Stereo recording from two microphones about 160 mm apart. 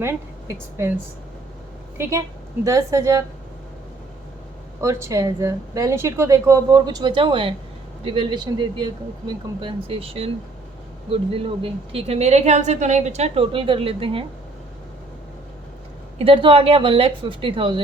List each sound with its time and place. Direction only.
0.0 s speech: 15° right (ahead or behind)
2.0 s a woman's voice: 20° right (ahead or behind)
4.8 s a woman's voice: 20° right (ahead or behind); by 14.3 s 35° right (ahead or behind)
16.1 s a woman's voice: 35° right (ahead or behind)